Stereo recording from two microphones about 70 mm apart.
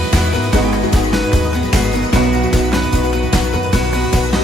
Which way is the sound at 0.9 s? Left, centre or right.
Centre.